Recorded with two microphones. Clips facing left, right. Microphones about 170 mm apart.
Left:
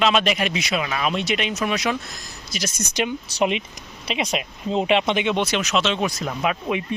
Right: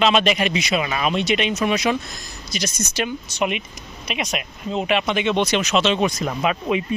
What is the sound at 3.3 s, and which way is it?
Speech, 30° left (ahead or behind).